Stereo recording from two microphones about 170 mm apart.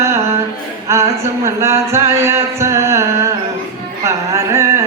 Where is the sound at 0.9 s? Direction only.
15° right (ahead or behind).